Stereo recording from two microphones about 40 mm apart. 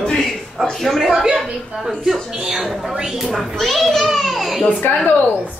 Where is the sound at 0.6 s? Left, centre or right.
Centre.